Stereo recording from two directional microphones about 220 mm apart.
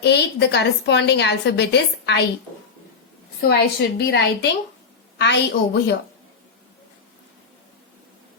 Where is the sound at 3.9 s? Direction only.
50° left (ahead or behind).